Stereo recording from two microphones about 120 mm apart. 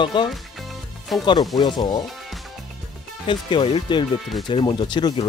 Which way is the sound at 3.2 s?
45° left (ahead or behind).